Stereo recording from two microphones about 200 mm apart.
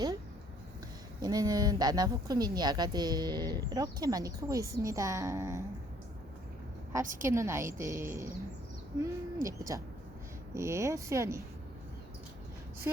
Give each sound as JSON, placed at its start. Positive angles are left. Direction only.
{"t": 1.2, "sound": "speech", "side_deg": -20}
{"t": 7.2, "sound": "a woman's voice", "side_deg": -15}